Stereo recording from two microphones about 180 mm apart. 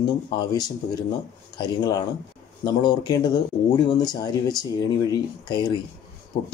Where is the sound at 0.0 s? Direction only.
20° left (ahead or behind).